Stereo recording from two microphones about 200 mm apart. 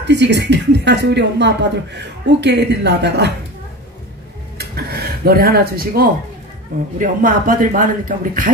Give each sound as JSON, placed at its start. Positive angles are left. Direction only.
{"t": 0.0, "sound": "speech", "side_deg": -60}
{"t": 4.6, "sound": "a sound", "side_deg": -50}
{"t": 7.0, "sound": "speech", "side_deg": -45}